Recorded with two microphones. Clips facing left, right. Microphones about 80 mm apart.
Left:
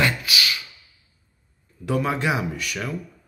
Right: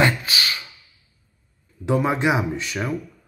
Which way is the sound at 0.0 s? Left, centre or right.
Right.